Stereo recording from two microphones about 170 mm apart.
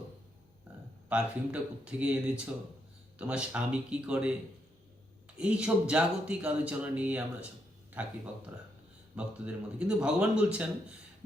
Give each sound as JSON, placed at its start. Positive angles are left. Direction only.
{"t": 1.1, "sound": "speech", "side_deg": -5}
{"t": 5.4, "sound": "speech", "side_deg": -5}
{"t": 9.1, "sound": "speech", "side_deg": -5}